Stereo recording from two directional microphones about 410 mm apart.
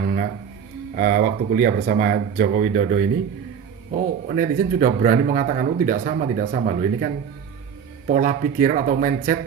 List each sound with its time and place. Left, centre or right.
0.9 s a man's voice: centre